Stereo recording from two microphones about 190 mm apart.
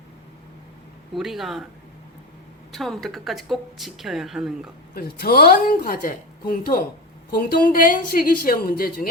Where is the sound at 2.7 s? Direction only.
Centre (ahead or behind).